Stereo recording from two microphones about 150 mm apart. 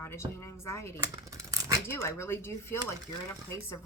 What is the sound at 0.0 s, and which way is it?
Speech, 15° left (ahead or behind).